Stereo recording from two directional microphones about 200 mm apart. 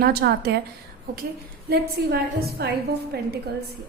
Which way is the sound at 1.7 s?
50° right (ahead or behind).